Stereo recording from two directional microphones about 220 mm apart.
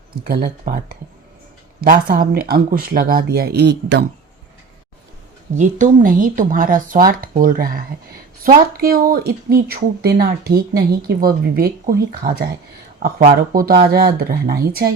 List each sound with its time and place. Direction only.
0.3 s speech: 40° right (ahead or behind)
5.5 s speech: 35° right (ahead or behind)